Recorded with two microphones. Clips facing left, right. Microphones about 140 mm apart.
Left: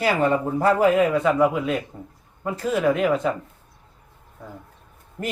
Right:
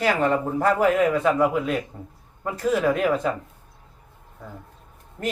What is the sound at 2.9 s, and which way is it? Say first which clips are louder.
Speech: left 1 dB; 15° left (ahead or behind).